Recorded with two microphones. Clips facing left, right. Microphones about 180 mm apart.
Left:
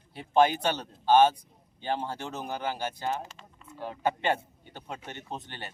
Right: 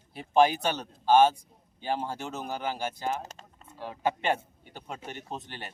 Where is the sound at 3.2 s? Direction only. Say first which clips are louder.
Even; 45° right (ahead or behind).